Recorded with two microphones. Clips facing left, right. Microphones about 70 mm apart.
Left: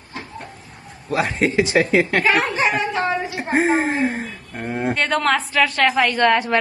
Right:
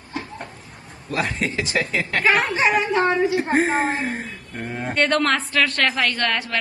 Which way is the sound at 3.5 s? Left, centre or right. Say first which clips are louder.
Left 2 dB; left.